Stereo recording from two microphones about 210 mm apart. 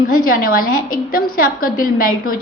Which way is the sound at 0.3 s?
45° left (ahead or behind).